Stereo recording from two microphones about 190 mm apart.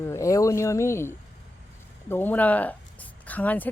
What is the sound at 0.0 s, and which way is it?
Speech, 15° left (ahead or behind).